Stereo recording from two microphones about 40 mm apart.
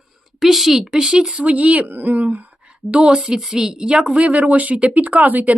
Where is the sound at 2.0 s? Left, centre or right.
Right.